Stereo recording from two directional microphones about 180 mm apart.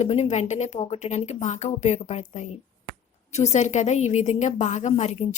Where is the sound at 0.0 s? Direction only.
40° left (ahead or behind).